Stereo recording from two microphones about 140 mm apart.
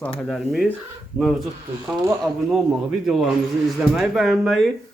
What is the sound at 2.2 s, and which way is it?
Speech, 5° right (ahead or behind).